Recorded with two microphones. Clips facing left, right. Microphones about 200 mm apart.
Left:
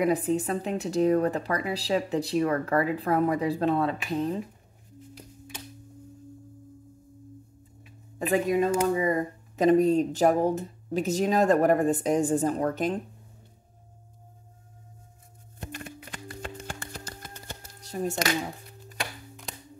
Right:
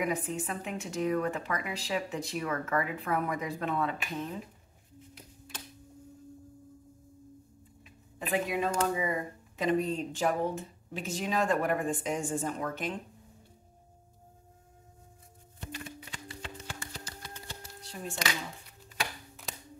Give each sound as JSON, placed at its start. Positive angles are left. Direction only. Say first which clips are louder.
{"t": 0.0, "sound": "speech", "louder": "left 8 dB", "side_deg": 35}
{"t": 8.3, "sound": "speech", "louder": "left 7 dB", "side_deg": 40}
{"t": 15.6, "sound": "music", "louder": "left 3 dB", "side_deg": 50}
{"t": 19.5, "sound": "music", "louder": "left 1 dB", "side_deg": 0}